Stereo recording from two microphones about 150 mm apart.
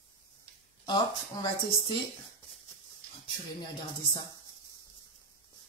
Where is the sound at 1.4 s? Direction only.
30° left (ahead or behind).